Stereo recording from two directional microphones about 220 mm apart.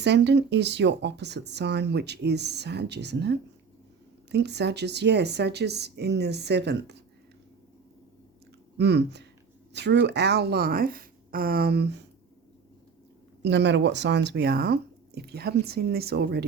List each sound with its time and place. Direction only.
0.0 s speech: 50° right (ahead or behind)
8.8 s speech: 50° right (ahead or behind)
13.4 s speech: 50° right (ahead or behind)